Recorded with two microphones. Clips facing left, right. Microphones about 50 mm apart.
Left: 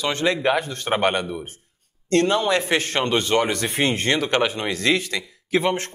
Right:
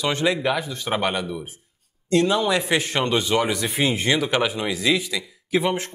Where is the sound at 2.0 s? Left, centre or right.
Left.